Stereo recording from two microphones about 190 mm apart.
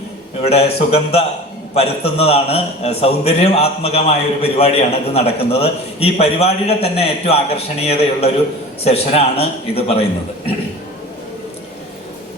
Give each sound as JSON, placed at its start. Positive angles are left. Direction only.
{"t": 0.5, "sound": "a man's voice", "side_deg": 30}